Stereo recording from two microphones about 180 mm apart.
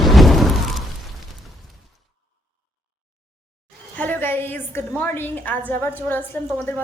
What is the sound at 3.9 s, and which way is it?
A woman's voice, 10° left (ahead or behind).